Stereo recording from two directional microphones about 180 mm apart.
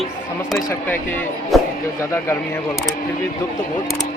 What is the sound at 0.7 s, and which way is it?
Speech, 10° left (ahead or behind).